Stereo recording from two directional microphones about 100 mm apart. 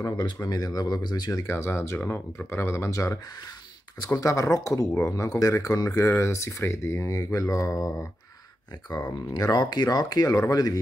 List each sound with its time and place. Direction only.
0.0 s speech: 40° left (ahead or behind)
1.4 s speech: 25° left (ahead or behind)